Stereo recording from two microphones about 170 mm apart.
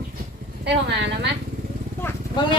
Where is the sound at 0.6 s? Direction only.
90° right.